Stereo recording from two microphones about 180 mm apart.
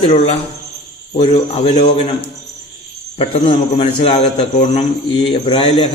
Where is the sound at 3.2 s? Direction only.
30° left (ahead or behind).